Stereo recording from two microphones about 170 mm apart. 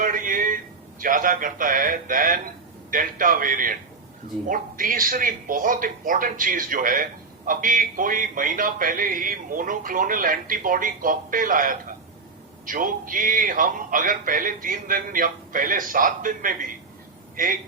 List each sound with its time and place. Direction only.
0.0 s a man's voice: 55° right (ahead or behind)